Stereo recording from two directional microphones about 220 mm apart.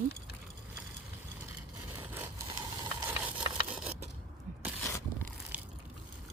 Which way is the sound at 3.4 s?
25° right (ahead or behind).